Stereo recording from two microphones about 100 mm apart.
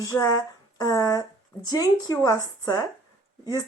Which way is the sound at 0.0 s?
30° left (ahead or behind).